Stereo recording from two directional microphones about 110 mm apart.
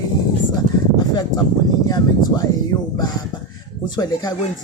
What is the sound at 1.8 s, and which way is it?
Speech, 35° left (ahead or behind).